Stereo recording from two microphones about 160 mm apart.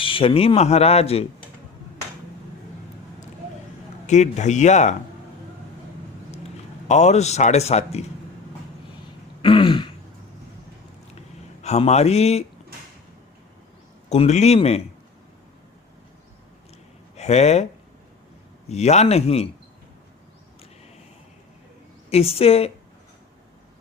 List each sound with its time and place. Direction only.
0.0 s speech: 35° left (ahead or behind)
4.0 s a man's voice: 45° left (ahead or behind)
6.8 s a man's voice: 45° left (ahead or behind)
9.4 s throat clearing: 30° left (ahead or behind)
11.6 s speech: 45° left (ahead or behind)
14.1 s a man's voice: 45° left (ahead or behind)
17.2 s speech: 45° left (ahead or behind)
18.7 s speech: 45° left (ahead or behind)
22.1 s speech: 40° left (ahead or behind)